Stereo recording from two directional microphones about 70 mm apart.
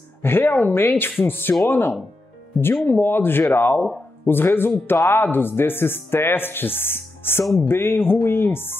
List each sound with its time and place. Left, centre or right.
0.2 s speech: left